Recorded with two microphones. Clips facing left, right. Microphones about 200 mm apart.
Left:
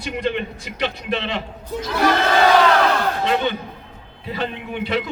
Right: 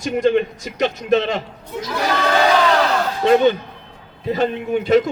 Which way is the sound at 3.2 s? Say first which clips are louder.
Right 7 dB; 40° right (ahead or behind).